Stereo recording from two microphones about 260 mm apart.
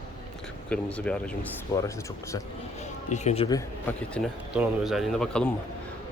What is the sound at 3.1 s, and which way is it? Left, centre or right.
Speech, left.